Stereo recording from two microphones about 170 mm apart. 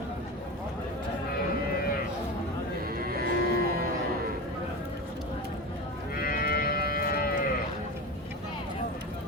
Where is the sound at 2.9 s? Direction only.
65° right (ahead or behind).